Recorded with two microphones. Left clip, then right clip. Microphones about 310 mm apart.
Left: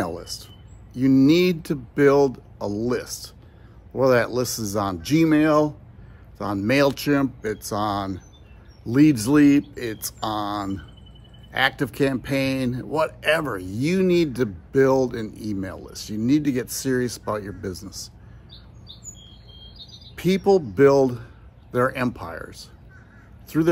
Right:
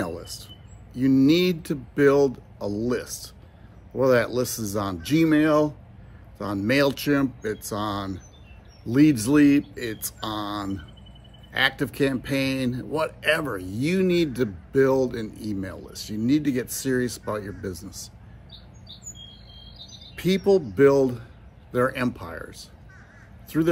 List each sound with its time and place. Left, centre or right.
0.0 s a sound: centre
0.9 s speech: centre
20.2 s speech: centre